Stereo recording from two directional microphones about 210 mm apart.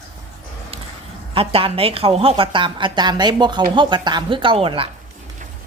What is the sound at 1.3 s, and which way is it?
A woman's voice, 25° right (ahead or behind).